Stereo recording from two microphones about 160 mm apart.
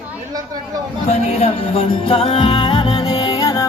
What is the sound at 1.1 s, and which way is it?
Music, 40° left (ahead or behind).